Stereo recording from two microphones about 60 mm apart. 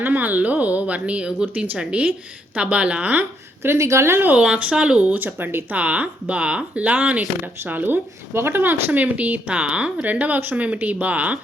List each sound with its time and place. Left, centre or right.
0.0 s speech: right
3.6 s a woman's voice: right
4.4 s speech: centre; by 5.6 s right
5.7 s speech: right
8.3 s speech: right